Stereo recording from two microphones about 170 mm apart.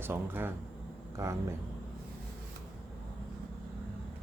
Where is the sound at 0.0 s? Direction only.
15° right (ahead or behind).